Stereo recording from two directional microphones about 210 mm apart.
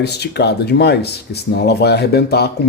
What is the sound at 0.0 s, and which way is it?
Speech, 50° left (ahead or behind).